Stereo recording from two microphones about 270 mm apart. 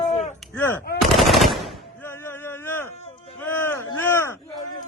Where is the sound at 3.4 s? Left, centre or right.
Centre.